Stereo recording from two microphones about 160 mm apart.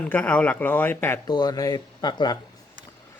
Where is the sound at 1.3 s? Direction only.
25° left (ahead or behind).